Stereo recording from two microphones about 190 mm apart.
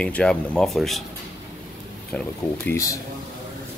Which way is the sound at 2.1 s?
5° left (ahead or behind).